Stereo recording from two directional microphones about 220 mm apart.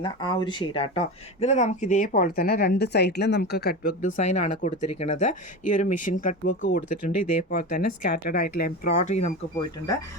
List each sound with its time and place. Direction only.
0.0 s speech: 20° left (ahead or behind); by 6.6 s 40° left (ahead or behind)
6.6 s speech: 50° left (ahead or behind)
7.5 s speech: 40° left (ahead or behind)
9.6 s speech: 15° left (ahead or behind)